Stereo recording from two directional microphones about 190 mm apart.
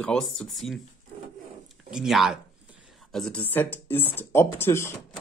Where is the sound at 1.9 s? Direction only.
Centre (ahead or behind).